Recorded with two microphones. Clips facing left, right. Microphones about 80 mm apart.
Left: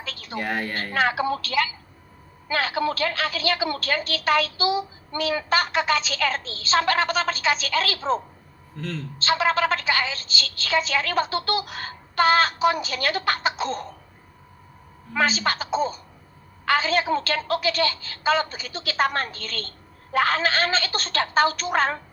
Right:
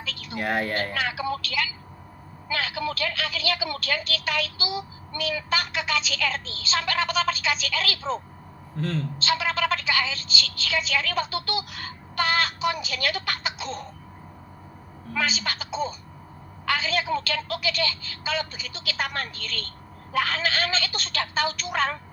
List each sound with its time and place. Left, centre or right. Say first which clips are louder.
0.0 s a sound: even; left
0.3 s a woman's voice: right 1 dB; centre
0.9 s a woman's voice: left 5 dB; left
8.8 s a woman's voice: right 3 dB; centre
9.1 s a woman's voice: left 7 dB; left
15.1 s a woman's voice: left 5 dB; left